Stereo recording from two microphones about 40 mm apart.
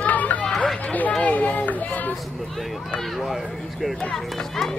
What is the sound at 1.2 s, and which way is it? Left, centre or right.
Children playing, left.